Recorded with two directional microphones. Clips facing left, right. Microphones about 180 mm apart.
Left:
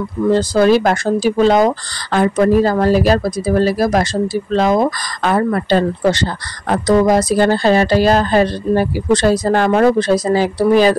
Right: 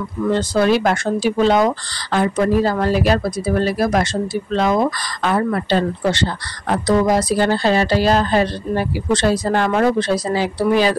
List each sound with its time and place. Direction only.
0.3 s speech: 40° left (ahead or behind)